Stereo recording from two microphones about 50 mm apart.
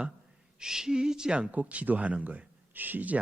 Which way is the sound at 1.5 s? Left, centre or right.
Right.